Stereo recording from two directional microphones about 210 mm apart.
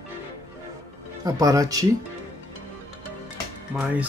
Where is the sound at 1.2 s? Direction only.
15° right (ahead or behind).